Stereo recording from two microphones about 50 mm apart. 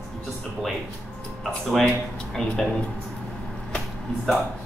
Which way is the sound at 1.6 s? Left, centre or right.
Centre.